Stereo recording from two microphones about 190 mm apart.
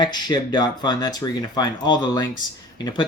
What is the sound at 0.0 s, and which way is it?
Speech, 20° left (ahead or behind).